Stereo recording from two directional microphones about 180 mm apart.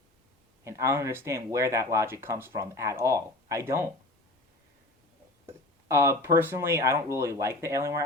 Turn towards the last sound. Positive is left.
turn(degrees=-15)  # may be behind; listen again after turning